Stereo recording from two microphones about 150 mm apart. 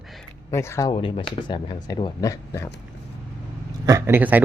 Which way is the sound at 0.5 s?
20° left (ahead or behind).